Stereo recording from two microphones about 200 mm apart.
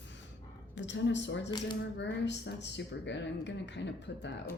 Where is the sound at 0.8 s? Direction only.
65° left (ahead or behind).